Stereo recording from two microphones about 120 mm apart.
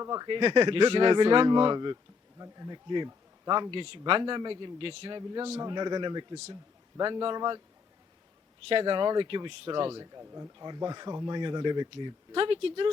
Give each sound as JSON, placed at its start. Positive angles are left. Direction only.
{"t": 0.0, "sound": "speech", "side_deg": -30}
{"t": 0.3, "sound": "a man's voice", "side_deg": -45}
{"t": 8.8, "sound": "speech", "side_deg": -40}